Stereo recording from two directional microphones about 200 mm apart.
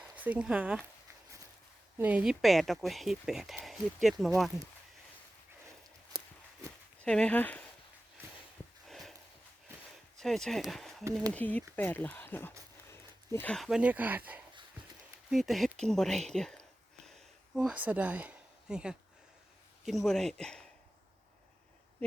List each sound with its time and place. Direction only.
0.0 s speech: 5° right (ahead or behind)
2.0 s speech: 10° right (ahead or behind)
7.0 s speech: 5° left (ahead or behind)
8.9 s a sound: centre (ahead or behind)
10.2 s speech: centre (ahead or behind)
17.1 s a sound: centre (ahead or behind)
19.8 s speech: centre (ahead or behind)